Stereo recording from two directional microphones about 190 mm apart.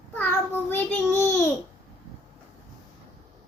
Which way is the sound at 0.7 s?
10° left (ahead or behind).